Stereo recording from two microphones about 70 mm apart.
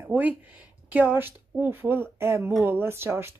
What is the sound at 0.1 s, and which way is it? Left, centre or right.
Speech, right.